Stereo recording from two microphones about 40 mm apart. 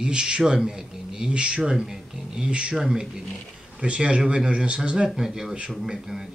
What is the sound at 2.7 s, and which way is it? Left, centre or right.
Speech, centre.